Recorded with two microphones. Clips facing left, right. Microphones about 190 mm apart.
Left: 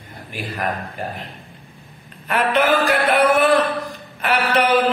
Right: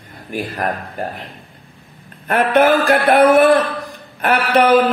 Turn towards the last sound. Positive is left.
turn(degrees=-50)  # may be behind; listen again after turning